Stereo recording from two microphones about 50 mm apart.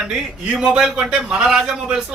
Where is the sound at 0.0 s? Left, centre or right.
Centre.